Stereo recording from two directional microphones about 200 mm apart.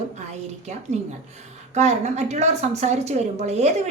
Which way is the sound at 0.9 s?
35° right (ahead or behind).